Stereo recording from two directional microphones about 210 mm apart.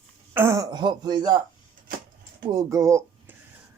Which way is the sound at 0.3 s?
15° right (ahead or behind).